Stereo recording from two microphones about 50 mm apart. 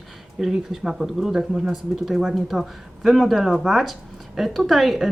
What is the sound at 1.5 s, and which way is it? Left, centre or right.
Speech, centre.